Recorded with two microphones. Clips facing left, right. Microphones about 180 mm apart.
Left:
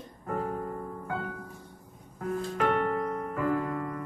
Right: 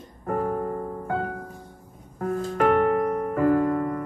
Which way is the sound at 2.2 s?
45° right (ahead or behind).